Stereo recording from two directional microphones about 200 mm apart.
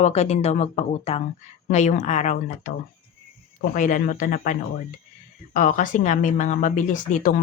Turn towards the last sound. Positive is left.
turn(degrees=40)  # may be behind; listen again after turning